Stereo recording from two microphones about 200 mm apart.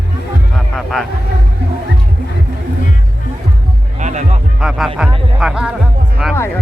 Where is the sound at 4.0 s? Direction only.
35° right (ahead or behind).